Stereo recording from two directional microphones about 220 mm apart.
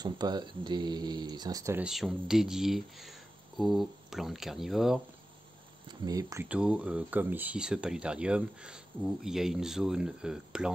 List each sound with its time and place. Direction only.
0.0 s speech: 20° right (ahead or behind); by 5.0 s centre (ahead or behind)
5.9 s speech: 15° right (ahead or behind)